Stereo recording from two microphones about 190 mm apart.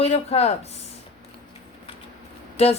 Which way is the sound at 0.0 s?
35° left (ahead or behind).